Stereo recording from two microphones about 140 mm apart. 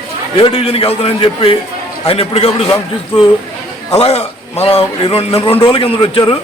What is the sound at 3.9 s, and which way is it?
A man's voice, 45° left (ahead or behind).